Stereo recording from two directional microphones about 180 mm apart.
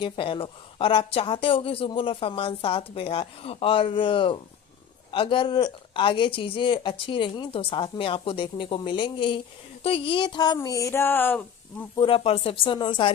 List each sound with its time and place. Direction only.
0.0 s speech: 30° left (ahead or behind); by 11.9 s 10° left (ahead or behind)
11.9 s speech: 30° left (ahead or behind)